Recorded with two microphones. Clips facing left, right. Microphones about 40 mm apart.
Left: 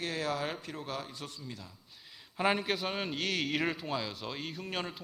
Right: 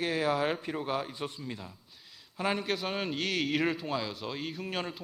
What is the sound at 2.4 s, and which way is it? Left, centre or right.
Speech, centre.